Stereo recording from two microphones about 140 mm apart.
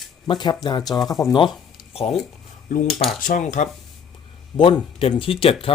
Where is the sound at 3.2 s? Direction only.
70° left (ahead or behind).